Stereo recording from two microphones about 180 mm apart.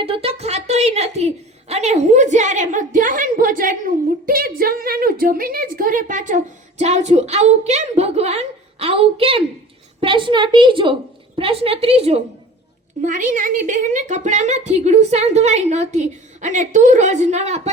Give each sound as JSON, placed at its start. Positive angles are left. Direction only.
{"t": 0.0, "sound": "a woman's voice", "side_deg": -30}
{"t": 13.0, "sound": "a woman's voice", "side_deg": -45}